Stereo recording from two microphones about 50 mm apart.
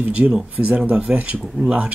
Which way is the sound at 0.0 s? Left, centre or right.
Right.